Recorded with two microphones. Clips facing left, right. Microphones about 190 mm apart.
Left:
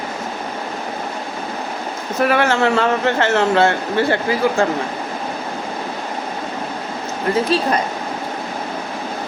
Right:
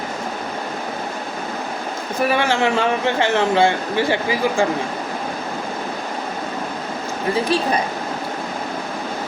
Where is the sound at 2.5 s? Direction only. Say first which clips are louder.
Left 2 dB; 15° right (ahead or behind).